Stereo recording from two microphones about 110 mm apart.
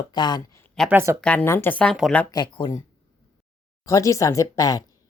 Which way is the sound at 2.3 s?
40° left (ahead or behind).